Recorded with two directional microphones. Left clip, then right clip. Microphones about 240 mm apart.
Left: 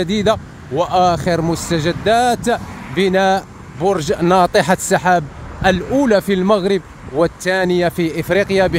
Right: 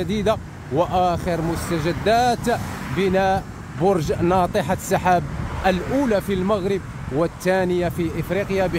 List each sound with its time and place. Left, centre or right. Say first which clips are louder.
0.0 s speech: left 5 dB; centre